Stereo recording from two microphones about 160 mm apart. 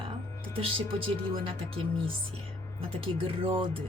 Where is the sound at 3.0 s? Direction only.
35° right (ahead or behind).